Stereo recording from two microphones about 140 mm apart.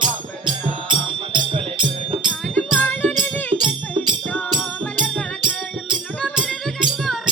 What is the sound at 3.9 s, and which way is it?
Music, 35° right (ahead or behind).